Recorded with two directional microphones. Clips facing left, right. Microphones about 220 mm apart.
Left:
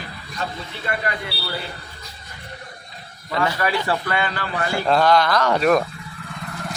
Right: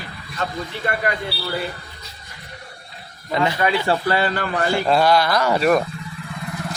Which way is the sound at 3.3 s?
20° right (ahead or behind).